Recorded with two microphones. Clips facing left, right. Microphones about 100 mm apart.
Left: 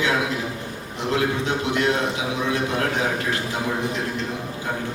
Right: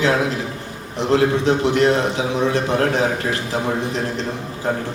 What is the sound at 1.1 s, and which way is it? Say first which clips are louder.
A man's voice: right 6 dB; 30° right (ahead or behind).